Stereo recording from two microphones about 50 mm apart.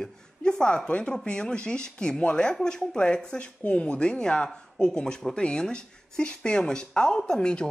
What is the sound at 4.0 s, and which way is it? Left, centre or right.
Speech, centre.